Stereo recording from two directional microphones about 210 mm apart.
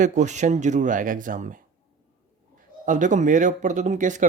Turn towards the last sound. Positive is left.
turn(degrees=-35)  # may be behind; listen again after turning